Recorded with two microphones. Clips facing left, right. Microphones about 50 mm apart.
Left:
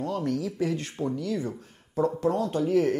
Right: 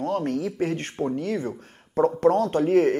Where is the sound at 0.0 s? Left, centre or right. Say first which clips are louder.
Right 3 dB; right.